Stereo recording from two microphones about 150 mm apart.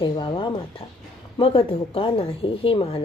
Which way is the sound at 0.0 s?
35° left (ahead or behind).